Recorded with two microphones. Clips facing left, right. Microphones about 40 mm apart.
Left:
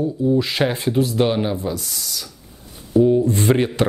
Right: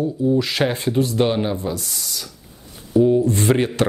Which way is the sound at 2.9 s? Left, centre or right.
Centre.